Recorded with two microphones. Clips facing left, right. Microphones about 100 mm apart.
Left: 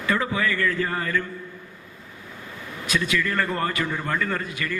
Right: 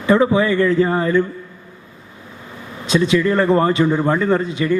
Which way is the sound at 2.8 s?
25° right (ahead or behind).